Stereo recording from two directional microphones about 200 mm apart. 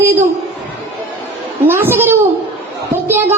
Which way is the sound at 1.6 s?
10° right (ahead or behind).